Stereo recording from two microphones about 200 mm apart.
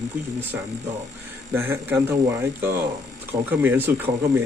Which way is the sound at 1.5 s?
10° right (ahead or behind).